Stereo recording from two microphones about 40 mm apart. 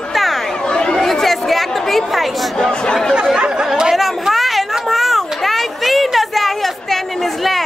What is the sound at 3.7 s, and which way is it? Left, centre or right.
Chatter, centre.